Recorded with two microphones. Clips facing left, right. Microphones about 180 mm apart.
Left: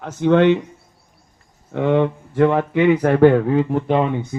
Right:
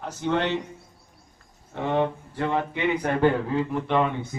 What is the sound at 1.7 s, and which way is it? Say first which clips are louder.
Speech: left 7 dB; 60° left (ahead or behind).